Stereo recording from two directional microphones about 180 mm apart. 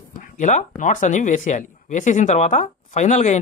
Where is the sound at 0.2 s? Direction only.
45° left (ahead or behind).